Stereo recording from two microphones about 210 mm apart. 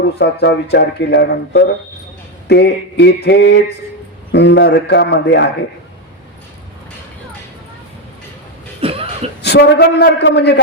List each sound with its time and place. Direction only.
0.0 s speech: 50° left (ahead or behind)
8.8 s a sound: 25° right (ahead or behind)
9.4 s speech: 50° left (ahead or behind)